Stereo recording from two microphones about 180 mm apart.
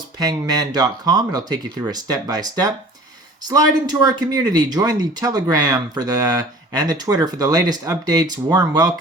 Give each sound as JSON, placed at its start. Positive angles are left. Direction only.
{"t": 0.2, "sound": "speech", "side_deg": -20}